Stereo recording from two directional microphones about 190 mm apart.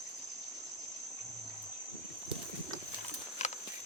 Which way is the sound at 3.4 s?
35° left (ahead or behind).